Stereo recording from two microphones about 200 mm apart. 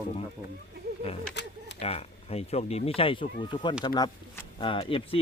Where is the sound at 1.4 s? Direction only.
60° left (ahead or behind).